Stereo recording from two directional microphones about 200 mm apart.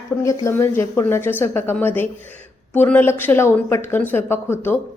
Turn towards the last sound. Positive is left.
turn(degrees=10)  # may be behind; listen again after turning